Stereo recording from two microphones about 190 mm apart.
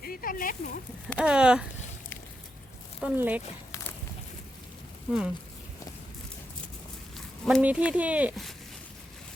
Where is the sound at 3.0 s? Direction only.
10° right (ahead or behind).